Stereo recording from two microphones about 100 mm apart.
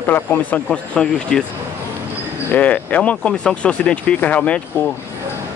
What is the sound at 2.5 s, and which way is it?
A man's voice, 15° left (ahead or behind).